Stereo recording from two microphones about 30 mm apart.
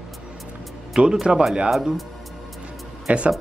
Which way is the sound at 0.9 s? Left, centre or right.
Right.